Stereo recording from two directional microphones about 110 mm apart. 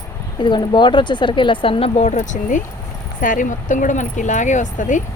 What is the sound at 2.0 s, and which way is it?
Speech, 90° left.